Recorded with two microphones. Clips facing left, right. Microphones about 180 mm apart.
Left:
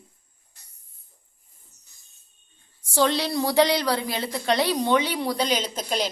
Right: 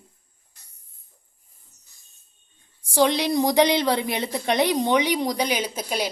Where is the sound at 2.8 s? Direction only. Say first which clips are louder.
Right 2 dB; 15° right (ahead or behind).